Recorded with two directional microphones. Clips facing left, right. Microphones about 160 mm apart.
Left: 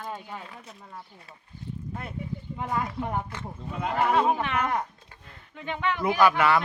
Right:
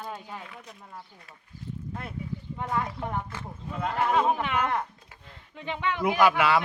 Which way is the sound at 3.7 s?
10° left (ahead or behind).